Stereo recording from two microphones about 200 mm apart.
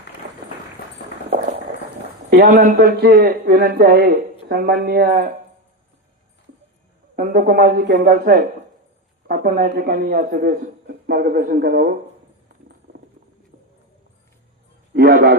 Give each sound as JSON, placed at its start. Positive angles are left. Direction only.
{"t": 2.3, "sound": "a man's voice", "side_deg": -45}
{"t": 7.2, "sound": "a man's voice", "side_deg": -45}
{"t": 14.9, "sound": "a man's voice", "side_deg": -50}